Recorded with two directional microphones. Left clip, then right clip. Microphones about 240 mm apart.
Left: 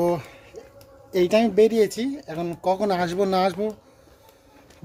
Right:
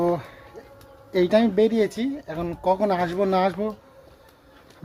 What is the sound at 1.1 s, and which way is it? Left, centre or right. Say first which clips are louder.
Speech: even; centre.